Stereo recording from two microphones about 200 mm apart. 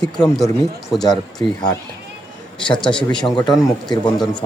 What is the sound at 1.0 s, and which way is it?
Speech, 20° left (ahead or behind).